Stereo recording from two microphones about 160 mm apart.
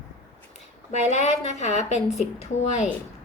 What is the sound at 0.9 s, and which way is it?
Speech, 45° left (ahead or behind).